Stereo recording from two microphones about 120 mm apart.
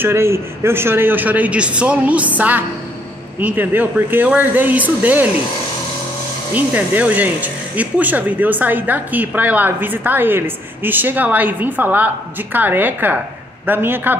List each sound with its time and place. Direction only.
0.0 s speech: 20° right (ahead or behind)
6.5 s speech: 15° right (ahead or behind)